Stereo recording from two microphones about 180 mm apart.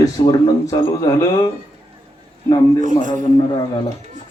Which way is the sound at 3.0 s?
45° right (ahead or behind).